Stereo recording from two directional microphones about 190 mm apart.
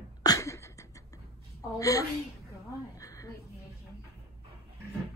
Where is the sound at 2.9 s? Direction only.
15° left (ahead or behind).